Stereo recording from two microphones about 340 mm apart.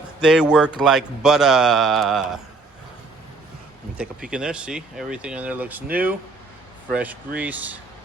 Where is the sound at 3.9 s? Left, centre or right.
Centre.